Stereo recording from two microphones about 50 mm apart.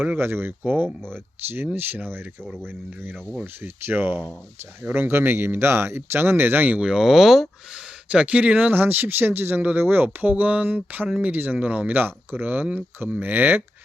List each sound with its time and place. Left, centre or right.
0.2 s speech: right
3.4 s speech: right
6.7 s speech: centre
8.1 s speech: right
10.2 s speech: right